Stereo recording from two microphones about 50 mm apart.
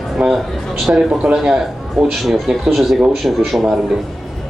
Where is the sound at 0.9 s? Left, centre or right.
Right.